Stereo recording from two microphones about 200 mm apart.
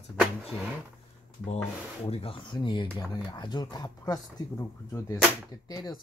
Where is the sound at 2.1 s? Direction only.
30° left (ahead or behind).